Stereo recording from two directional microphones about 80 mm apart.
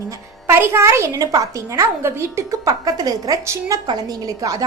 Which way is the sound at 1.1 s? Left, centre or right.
Right.